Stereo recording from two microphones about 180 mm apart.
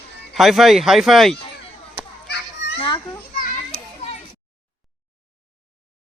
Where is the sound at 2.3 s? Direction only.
75° left (ahead or behind).